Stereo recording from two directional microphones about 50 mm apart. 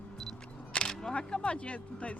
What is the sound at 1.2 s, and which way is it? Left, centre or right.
Speech, left.